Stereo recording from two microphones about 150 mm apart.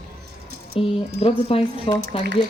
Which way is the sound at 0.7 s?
40° left (ahead or behind).